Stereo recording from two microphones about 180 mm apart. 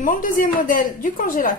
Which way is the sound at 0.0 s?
50° left (ahead or behind).